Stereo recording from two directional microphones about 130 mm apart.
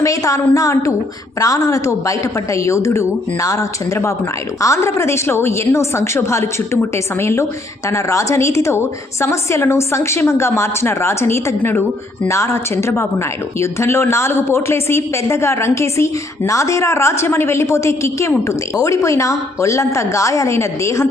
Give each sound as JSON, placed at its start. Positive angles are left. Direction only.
{"t": 0.0, "sound": "speech", "side_deg": 25}